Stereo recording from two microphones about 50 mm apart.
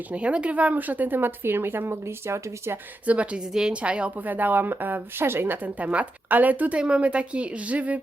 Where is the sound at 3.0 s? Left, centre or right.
Right.